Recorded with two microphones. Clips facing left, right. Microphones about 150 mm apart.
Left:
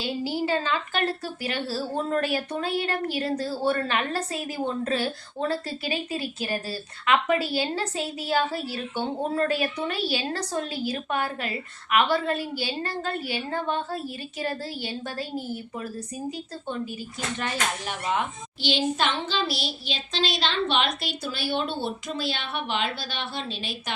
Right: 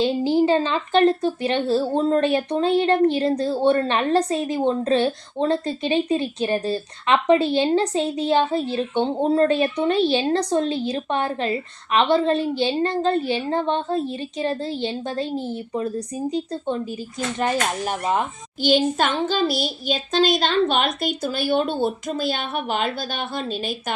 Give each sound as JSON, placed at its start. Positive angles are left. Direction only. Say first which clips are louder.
{"t": 0.0, "sound": "speech", "louder": "right 9 dB", "side_deg": -25}
{"t": 17.4, "sound": "a child's voice", "louder": "right 8 dB", "side_deg": -40}